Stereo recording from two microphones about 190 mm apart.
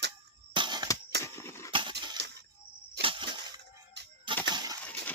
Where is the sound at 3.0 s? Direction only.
25° right (ahead or behind).